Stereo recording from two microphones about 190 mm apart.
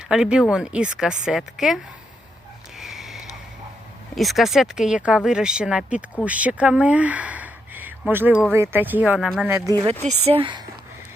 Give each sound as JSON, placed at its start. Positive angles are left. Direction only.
{"t": 0.1, "sound": "speech", "side_deg": -5}
{"t": 2.7, "sound": "sniff", "side_deg": 0}
{"t": 4.2, "sound": "speech", "side_deg": 0}
{"t": 9.6, "sound": "speech", "side_deg": -20}
{"t": 10.0, "sound": "speech", "side_deg": -35}